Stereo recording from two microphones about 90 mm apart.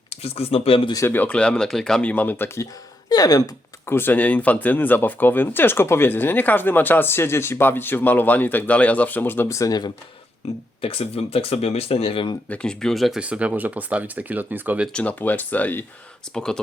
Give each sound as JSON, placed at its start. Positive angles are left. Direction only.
{"t": 0.1, "sound": "speech", "side_deg": 90}
{"t": 1.0, "sound": "speech", "side_deg": 20}
{"t": 3.1, "sound": "speech", "side_deg": 45}
{"t": 3.8, "sound": "speech", "side_deg": 25}
{"t": 9.5, "sound": "speech", "side_deg": 40}
{"t": 10.8, "sound": "speech", "side_deg": 90}
{"t": 12.5, "sound": "speech", "side_deg": 5}
{"t": 13.2, "sound": "speech", "side_deg": -15}
{"t": 14.9, "sound": "speech", "side_deg": 15}
{"t": 16.3, "sound": "speech", "side_deg": 5}